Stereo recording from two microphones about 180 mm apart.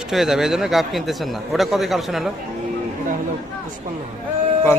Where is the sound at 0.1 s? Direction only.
Centre (ahead or behind).